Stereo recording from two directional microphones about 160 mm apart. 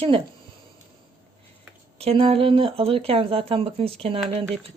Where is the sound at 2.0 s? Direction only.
35° right (ahead or behind).